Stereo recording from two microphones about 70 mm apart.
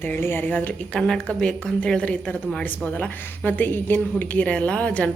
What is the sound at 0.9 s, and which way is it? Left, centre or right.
A woman's voice, centre.